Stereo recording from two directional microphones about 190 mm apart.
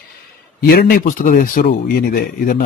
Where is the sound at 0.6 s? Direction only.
50° left (ahead or behind).